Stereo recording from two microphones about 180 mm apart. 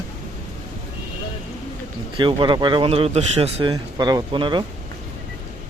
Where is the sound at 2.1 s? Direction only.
25° right (ahead or behind).